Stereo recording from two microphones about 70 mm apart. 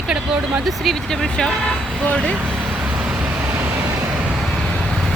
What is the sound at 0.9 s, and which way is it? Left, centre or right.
Speech, centre.